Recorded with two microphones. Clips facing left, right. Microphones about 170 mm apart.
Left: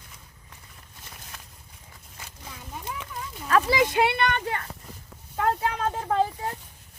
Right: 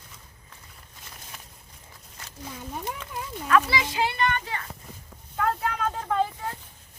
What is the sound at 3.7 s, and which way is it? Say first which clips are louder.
Speech: left 5 dB; 60° left (ahead or behind).